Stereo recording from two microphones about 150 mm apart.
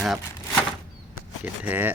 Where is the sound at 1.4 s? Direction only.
10° right (ahead or behind).